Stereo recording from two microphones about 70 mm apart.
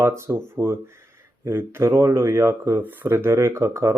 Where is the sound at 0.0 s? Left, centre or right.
Right.